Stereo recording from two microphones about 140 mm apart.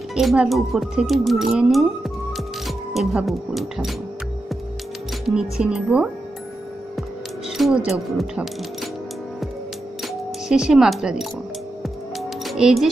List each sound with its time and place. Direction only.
0.1 s speech: centre (ahead or behind)
5.2 s speech: 5° right (ahead or behind)
10.0 s speech: 5° right (ahead or behind)
11.8 s music: centre (ahead or behind)